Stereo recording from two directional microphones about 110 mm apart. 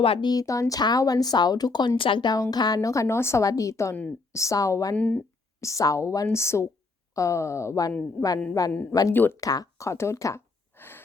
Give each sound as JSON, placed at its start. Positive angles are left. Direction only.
{"t": 0.0, "sound": "speech", "side_deg": 55}
{"t": 0.3, "sound": "speech", "side_deg": 30}
{"t": 4.9, "sound": "speech", "side_deg": 10}
{"t": 5.5, "sound": "speech", "side_deg": 30}
{"t": 9.1, "sound": "speech", "side_deg": 20}
{"t": 9.4, "sound": "a sound", "side_deg": 35}